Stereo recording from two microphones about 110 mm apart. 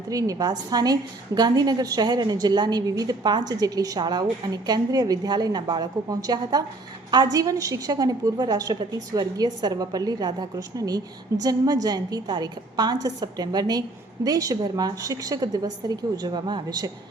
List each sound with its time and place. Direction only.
0.1 s a woman's voice: 30° right (ahead or behind)